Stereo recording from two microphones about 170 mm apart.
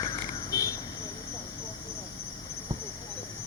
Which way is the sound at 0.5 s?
20° left (ahead or behind).